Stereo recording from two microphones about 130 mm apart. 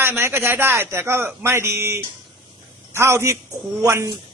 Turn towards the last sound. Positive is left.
turn(degrees=-20)  # may be behind; listen again after turning